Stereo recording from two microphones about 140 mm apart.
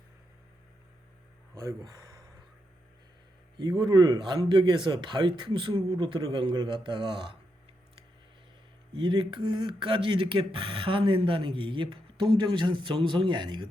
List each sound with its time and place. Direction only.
1.5 s speech: 25° right (ahead or behind)
3.6 s a man's voice: 30° right (ahead or behind)
9.0 s speech: 35° right (ahead or behind)